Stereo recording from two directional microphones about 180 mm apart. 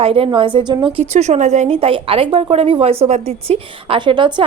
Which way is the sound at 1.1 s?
40° right (ahead or behind).